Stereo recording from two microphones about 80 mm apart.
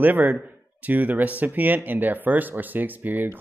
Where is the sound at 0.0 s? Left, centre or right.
Right.